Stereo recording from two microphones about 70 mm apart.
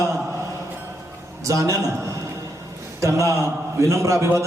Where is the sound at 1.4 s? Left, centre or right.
Right.